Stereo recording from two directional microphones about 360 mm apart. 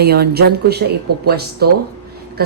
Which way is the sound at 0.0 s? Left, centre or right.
Right.